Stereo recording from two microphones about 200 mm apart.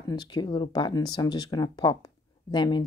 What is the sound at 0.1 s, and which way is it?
Speech, 20° left (ahead or behind).